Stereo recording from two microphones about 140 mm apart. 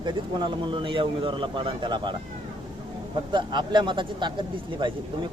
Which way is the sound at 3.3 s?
35° right (ahead or behind).